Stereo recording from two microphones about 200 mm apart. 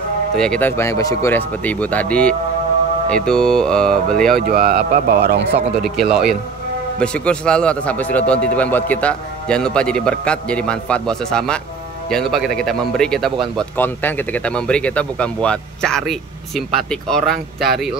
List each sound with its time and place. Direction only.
0.4 s a man's voice: 5° left (ahead or behind)
4.4 s speech: 45° right (ahead or behind)
5.7 s a man's voice: centre (ahead or behind)